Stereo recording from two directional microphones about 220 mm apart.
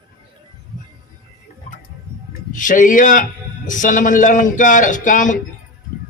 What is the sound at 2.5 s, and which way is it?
A man's voice, 35° left (ahead or behind).